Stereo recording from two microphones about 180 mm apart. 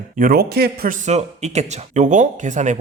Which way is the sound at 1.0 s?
40° right (ahead or behind).